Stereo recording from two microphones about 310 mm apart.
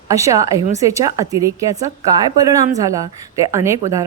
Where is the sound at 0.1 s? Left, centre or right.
Centre.